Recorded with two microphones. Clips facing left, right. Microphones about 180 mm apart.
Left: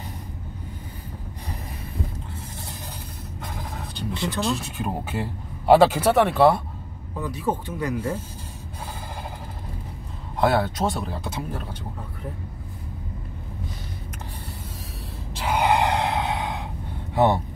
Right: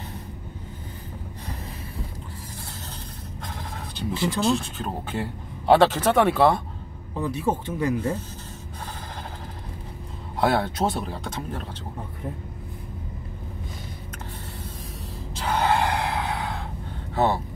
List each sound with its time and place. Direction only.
3.4 s a sound: centre (ahead or behind)
4.4 s speech: centre (ahead or behind)
7.2 s speech: 25° right (ahead or behind)
10.4 s speech: centre (ahead or behind)
15.4 s gasp: 15° left (ahead or behind)
17.1 s speech: 15° left (ahead or behind)